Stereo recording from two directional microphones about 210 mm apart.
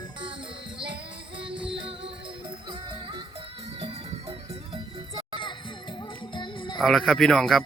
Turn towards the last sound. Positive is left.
turn(degrees=0)  # may be behind; listen again after turning